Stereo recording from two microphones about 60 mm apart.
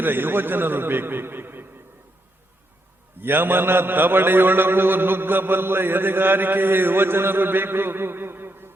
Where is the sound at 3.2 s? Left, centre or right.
Right.